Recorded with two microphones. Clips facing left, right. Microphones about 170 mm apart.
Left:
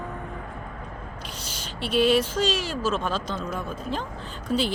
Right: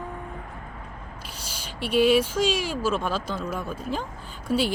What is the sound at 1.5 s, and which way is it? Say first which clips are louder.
Speech: right 1 dB; 10° right (ahead or behind).